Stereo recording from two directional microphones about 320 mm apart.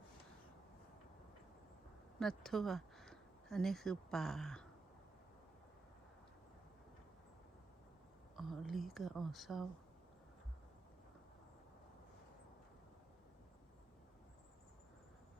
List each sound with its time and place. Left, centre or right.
2.1 s speech: centre
8.4 s speech: centre